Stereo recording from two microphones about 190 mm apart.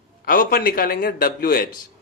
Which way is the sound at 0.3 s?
50° left (ahead or behind).